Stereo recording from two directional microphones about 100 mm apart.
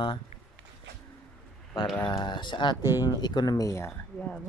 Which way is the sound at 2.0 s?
50° left (ahead or behind).